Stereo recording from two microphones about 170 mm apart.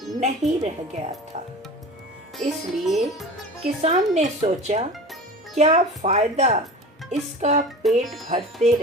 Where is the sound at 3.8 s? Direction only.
45° right (ahead or behind).